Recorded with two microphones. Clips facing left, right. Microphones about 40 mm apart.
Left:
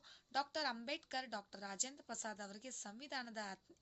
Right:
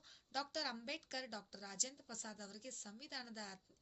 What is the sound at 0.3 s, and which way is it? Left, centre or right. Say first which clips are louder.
A woman's voice: left 3 dB; centre.